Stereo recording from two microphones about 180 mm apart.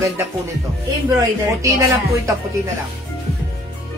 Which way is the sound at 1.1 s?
15° right (ahead or behind).